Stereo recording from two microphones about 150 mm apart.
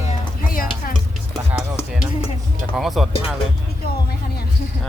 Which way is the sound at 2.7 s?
Centre (ahead or behind).